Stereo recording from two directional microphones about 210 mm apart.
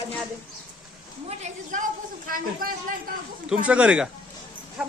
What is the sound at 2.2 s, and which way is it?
Speech, 40° right (ahead or behind).